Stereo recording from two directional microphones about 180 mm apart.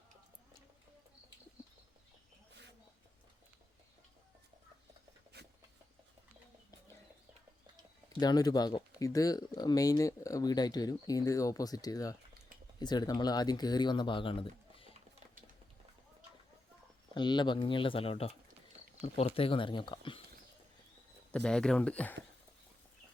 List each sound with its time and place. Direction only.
8.2 s speech: 20° left (ahead or behind)
17.2 s speech: 25° left (ahead or behind)
21.3 s speech: 5° left (ahead or behind)